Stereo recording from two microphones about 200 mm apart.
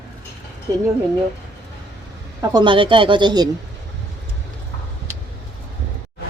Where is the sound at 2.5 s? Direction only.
25° right (ahead or behind).